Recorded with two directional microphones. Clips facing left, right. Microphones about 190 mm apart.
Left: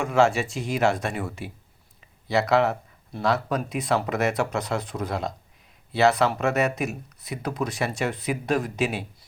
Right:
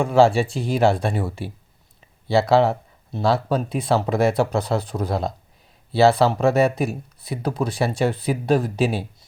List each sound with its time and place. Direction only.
0.0 s speech: 30° right (ahead or behind)